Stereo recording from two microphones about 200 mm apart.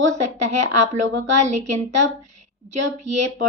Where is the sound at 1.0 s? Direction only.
70° right (ahead or behind).